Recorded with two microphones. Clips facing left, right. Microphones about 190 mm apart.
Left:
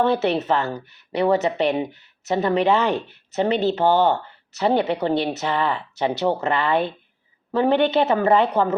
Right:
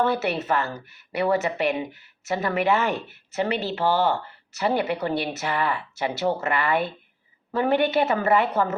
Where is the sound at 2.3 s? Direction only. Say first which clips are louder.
Left 4 dB; 20° left (ahead or behind).